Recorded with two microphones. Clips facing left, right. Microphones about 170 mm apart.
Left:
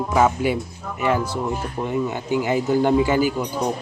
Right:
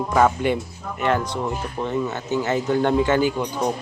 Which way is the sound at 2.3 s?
10° left (ahead or behind).